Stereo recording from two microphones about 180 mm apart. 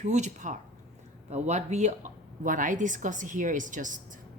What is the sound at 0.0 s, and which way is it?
A woman's voice, 40° right (ahead or behind).